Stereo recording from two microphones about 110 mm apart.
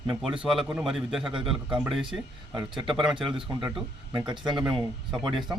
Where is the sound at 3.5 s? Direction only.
25° right (ahead or behind).